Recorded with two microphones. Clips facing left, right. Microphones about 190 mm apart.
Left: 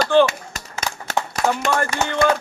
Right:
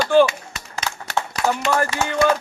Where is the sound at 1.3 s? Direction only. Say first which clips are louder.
Even; 45° left (ahead or behind).